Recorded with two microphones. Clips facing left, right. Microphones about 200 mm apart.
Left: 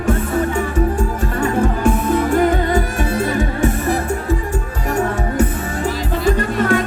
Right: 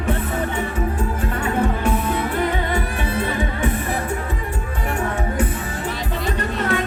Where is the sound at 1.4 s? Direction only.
45° left (ahead or behind).